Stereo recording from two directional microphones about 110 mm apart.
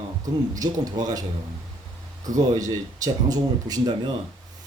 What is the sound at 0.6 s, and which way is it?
Speech, 35° right (ahead or behind).